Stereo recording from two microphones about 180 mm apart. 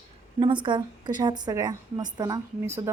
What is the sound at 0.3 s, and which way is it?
A woman's voice, 25° right (ahead or behind).